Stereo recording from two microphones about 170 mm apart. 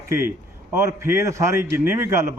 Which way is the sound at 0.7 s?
15° right (ahead or behind).